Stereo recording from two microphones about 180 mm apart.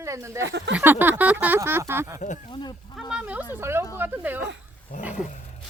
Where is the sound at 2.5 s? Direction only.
25° left (ahead or behind).